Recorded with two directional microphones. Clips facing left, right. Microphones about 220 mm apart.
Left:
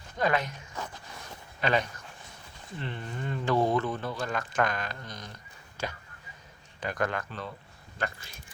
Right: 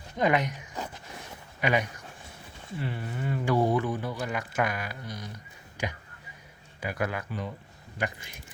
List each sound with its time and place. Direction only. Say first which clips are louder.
0.2 s speech: right 3 dB; 15° right (ahead or behind)
5.7 s a sound: right 2 dB; 15° right (ahead or behind)
6.7 s speech: even; 10° right (ahead or behind)